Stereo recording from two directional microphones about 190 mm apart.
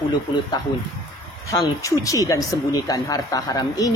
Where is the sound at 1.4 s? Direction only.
15° left (ahead or behind).